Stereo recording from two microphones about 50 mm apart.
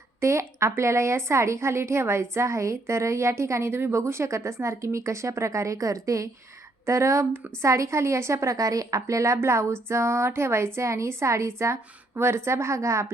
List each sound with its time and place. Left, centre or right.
0.2 s a woman's voice: right
2.3 s a woman's voice: right
4.0 s a woman's voice: right
10.8 s a woman's voice: right